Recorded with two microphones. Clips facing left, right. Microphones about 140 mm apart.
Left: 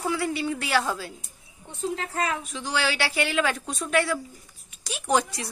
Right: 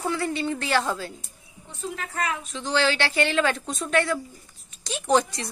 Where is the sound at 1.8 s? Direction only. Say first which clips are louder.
Left 2 dB; 30° left (ahead or behind).